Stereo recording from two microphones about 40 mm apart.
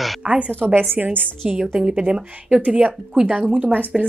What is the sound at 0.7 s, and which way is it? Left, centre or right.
Speech, right.